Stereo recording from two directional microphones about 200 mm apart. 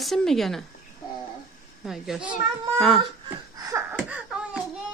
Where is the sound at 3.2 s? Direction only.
20° right (ahead or behind).